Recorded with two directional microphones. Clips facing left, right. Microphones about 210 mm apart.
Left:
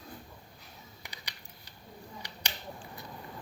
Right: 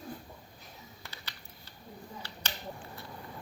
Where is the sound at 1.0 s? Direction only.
15° left (ahead or behind).